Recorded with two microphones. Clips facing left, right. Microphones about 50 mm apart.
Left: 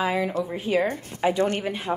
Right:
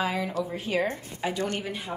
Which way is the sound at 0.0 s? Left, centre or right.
Centre.